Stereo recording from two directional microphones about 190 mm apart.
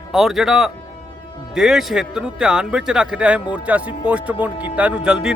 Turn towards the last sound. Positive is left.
turn(degrees=-5)  # may be behind; listen again after turning